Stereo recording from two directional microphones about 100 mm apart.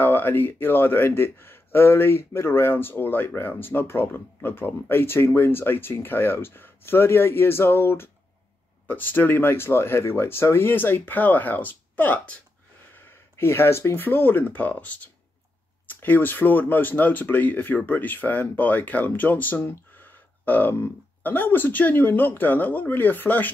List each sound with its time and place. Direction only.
0.0 s speech: 20° left (ahead or behind)